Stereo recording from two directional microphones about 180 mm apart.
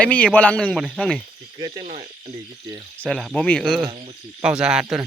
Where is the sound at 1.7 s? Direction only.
45° right (ahead or behind).